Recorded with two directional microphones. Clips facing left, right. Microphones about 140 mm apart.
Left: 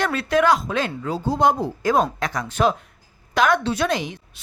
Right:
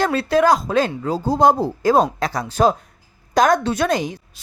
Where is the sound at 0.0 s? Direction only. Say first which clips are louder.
Right 3 dB; 35° right (ahead or behind).